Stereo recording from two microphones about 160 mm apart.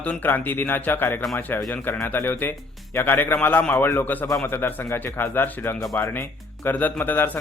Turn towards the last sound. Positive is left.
turn(degrees=10)  # may be behind; listen again after turning